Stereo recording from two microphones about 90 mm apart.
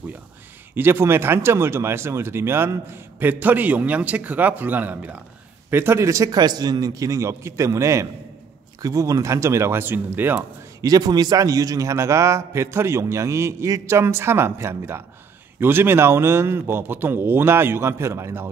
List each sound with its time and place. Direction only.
0.7 s a man's voice: 25° right (ahead or behind)
10.8 s a man's voice: 45° right (ahead or behind); by 18.5 s 30° right (ahead or behind)